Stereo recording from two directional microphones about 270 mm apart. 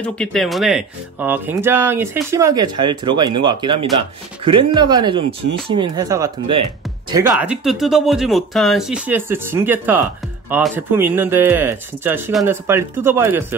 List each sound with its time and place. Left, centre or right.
0.0 s speech: centre